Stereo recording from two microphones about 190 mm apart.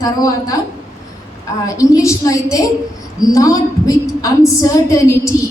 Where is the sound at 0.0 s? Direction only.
20° left (ahead or behind).